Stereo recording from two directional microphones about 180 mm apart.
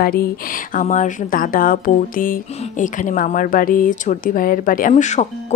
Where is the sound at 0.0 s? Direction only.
55° left (ahead or behind).